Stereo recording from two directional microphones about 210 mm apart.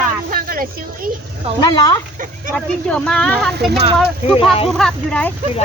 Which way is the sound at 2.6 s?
5° left (ahead or behind).